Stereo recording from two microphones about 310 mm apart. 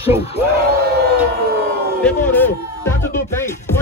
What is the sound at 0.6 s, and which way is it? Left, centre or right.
Crowd, right.